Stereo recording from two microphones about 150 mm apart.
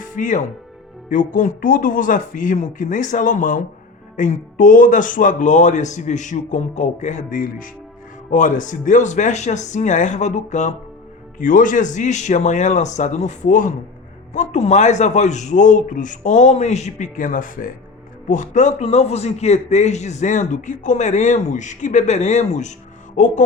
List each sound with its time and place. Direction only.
0.0 s a man's voice: 55° left (ahead or behind)